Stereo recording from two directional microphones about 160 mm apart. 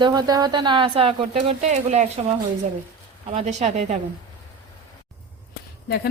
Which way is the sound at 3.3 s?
45° right (ahead or behind).